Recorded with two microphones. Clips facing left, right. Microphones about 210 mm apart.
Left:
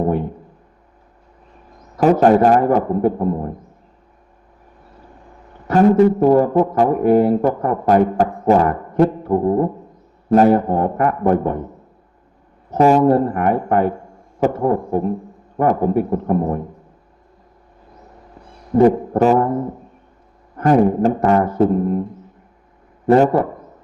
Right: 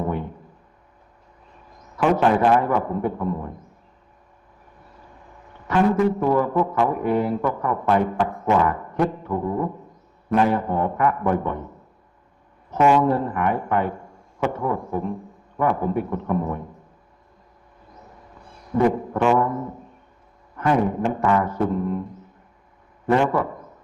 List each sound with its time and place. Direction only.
2.0 s a man's voice: 40° left (ahead or behind)
5.6 s a man's voice: 35° left (ahead or behind)
12.7 s a man's voice: 35° left (ahead or behind)
18.7 s a man's voice: 40° left (ahead or behind)
20.6 s a man's voice: 40° left (ahead or behind)
23.0 s a man's voice: 40° left (ahead or behind)